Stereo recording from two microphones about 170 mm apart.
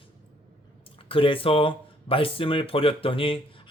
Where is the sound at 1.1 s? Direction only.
30° left (ahead or behind).